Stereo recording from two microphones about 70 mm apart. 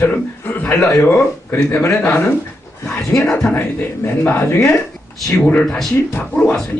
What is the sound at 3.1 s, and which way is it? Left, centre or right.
Speech, centre.